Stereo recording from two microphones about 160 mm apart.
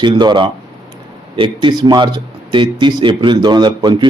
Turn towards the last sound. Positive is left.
turn(degrees=-30)  # may be behind; listen again after turning